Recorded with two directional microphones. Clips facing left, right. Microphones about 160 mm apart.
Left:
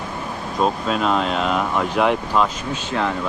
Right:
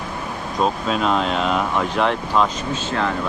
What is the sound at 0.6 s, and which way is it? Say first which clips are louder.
Speech: even; centre (ahead or behind).